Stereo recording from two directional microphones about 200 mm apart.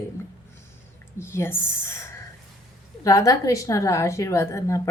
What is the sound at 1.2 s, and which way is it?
A woman's voice, 15° left (ahead or behind).